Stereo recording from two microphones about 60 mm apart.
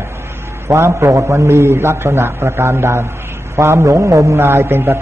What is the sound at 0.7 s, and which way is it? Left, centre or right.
A man's voice, right.